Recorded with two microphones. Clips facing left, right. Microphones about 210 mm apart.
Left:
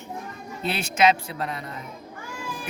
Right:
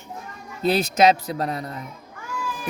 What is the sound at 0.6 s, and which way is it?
Speech, 35° right (ahead or behind).